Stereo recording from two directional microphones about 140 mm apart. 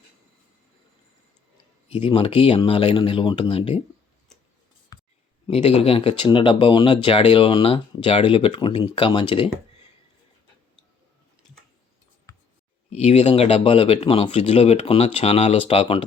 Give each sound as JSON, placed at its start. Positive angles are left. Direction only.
{"t": 1.9, "sound": "speech", "side_deg": 40}
{"t": 5.5, "sound": "speech", "side_deg": 50}
{"t": 12.9, "sound": "speech", "side_deg": 50}